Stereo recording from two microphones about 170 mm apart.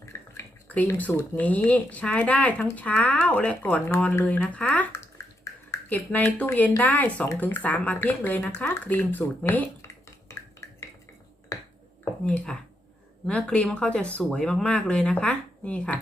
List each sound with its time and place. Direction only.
0.0 s speech: 15° left (ahead or behind)
10.6 s a sound: 15° left (ahead or behind)
11.5 s finger snapping: 20° left (ahead or behind)
12.2 s speech: 5° left (ahead or behind)